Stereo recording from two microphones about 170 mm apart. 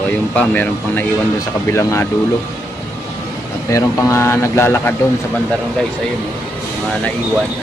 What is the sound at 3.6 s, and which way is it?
Speech, 15° left (ahead or behind).